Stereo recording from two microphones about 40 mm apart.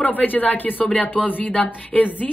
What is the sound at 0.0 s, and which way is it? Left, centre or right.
A woman's voice, left.